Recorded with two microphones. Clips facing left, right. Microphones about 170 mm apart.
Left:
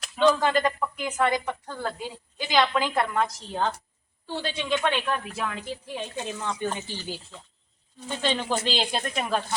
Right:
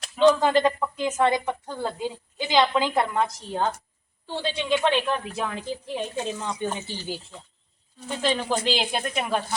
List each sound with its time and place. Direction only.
0.0 s speech: 25° right (ahead or behind); by 9.6 s 5° right (ahead or behind)